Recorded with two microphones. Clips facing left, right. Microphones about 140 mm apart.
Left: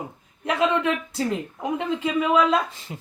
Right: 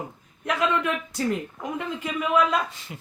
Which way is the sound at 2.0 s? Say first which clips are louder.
Left 3 dB; 25° left (ahead or behind).